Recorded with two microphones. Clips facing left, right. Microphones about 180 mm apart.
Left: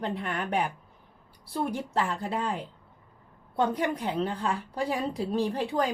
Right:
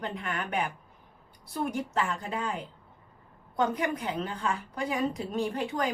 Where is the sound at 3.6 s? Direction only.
35° left (ahead or behind).